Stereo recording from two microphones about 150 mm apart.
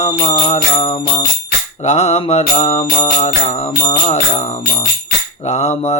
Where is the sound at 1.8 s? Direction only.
45° left (ahead or behind).